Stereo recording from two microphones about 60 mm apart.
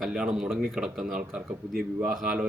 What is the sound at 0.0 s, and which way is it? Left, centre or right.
Speech, centre.